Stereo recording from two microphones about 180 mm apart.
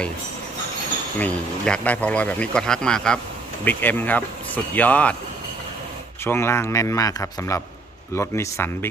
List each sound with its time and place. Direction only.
1.2 s a man's voice: 5° left (ahead or behind)
6.2 s speech: 15° left (ahead or behind)